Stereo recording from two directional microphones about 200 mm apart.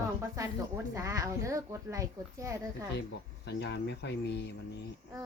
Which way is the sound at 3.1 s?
60° left (ahead or behind).